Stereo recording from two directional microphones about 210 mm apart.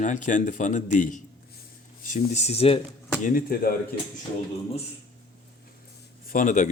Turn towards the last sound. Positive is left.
turn(degrees=35)  # may be behind; listen again after turning